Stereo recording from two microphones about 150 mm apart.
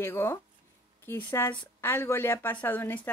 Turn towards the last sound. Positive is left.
turn(degrees=15)  # may be behind; listen again after turning